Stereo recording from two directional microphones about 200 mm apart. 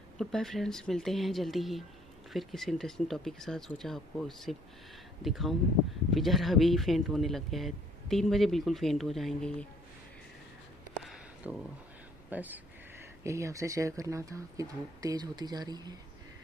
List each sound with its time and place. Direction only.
0.2 s speech: centre (ahead or behind)
11.4 s speech: 5° right (ahead or behind)